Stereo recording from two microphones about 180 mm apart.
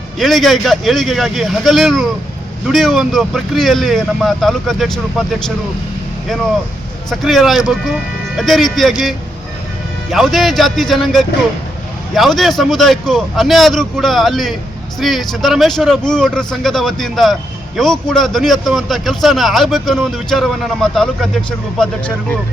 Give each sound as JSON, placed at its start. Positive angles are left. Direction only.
{"t": 0.2, "sound": "a man's voice", "side_deg": 0}
{"t": 7.1, "sound": "a man's voice", "side_deg": 0}
{"t": 10.1, "sound": "a man's voice", "side_deg": 0}